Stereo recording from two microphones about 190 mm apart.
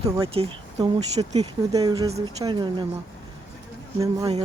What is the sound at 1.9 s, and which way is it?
Speech, 20° right (ahead or behind).